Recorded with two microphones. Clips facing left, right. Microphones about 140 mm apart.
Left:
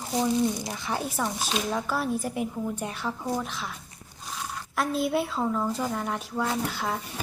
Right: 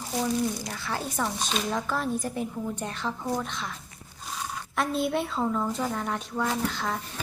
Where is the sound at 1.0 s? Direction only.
5° left (ahead or behind).